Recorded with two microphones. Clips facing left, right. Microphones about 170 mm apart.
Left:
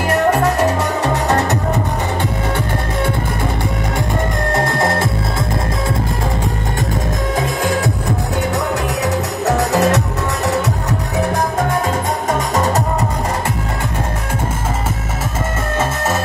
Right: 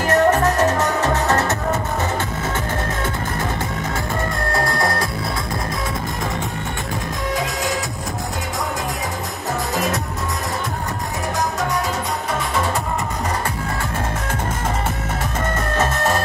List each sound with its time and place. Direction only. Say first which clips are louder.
0.0 s music: left 1 dB; 10° left (ahead or behind)
4.5 s music: left 4 dB; 20° left (ahead or behind)
7.3 s music: left 6 dB; 55° left (ahead or behind)
8.5 s music: left 6 dB; 75° left (ahead or behind)
12.3 s music: left 5 dB; 45° left (ahead or behind)
15.8 s music: even; 5° left (ahead or behind)